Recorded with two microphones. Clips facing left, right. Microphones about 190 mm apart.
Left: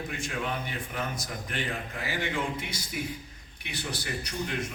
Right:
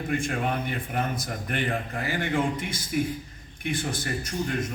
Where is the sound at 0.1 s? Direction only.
55° right (ahead or behind).